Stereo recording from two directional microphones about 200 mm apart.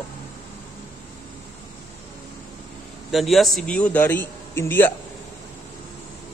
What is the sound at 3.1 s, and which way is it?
A man's voice, centre (ahead or behind).